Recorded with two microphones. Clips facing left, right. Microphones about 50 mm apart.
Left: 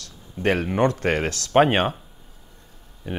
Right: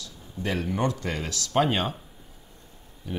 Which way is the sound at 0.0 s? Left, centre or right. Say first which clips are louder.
Left 8 dB; left.